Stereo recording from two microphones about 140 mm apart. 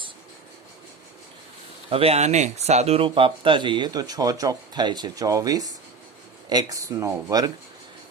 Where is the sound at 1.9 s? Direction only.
45° right (ahead or behind).